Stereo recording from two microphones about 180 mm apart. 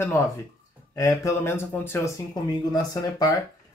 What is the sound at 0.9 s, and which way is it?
Speech, 15° left (ahead or behind).